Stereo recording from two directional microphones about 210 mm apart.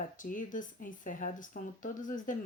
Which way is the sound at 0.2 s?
40° left (ahead or behind).